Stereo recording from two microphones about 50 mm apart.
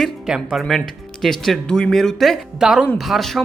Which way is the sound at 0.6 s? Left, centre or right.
Centre.